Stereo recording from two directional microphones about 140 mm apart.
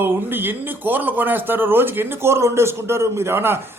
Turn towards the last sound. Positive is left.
turn(degrees=-15)  # may be behind; listen again after turning